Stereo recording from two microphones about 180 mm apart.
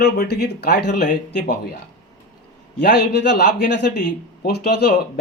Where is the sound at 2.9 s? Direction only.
65° left (ahead or behind).